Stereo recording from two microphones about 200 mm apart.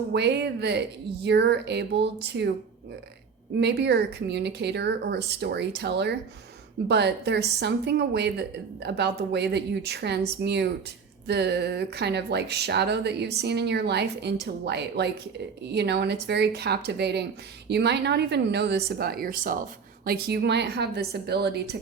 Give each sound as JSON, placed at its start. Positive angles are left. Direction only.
{"t": 0.1, "sound": "a woman's voice", "side_deg": -60}
{"t": 3.6, "sound": "a woman's voice", "side_deg": -60}